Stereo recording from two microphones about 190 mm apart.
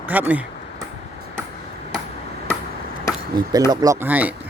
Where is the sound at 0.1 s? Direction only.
10° right (ahead or behind).